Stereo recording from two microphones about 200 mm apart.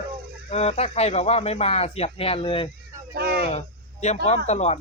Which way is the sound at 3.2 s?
50° right (ahead or behind).